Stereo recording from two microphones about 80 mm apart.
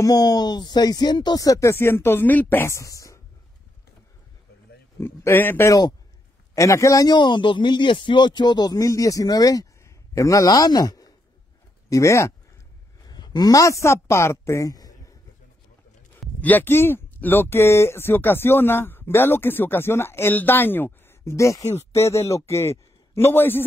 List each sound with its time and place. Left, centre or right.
0.0 s speech: left
2.7 s speech: left
5.0 s speech: left
6.5 s a man's voice: left
7.1 s speech: left
11.9 s a man's voice: left
13.0 s a sound: left
13.5 s speech: left
16.3 s speech: left